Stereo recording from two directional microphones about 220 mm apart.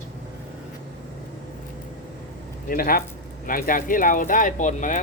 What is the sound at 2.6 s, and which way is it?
Speech, 40° left (ahead or behind).